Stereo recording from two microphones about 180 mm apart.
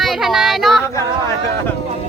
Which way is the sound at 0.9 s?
15° left (ahead or behind).